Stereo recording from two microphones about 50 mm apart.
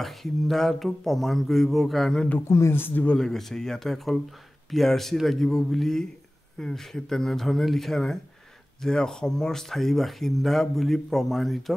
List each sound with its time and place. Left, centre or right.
0.0 s speech: centre
2.4 s speech: left
2.7 s speech: left
3.2 s speech: centre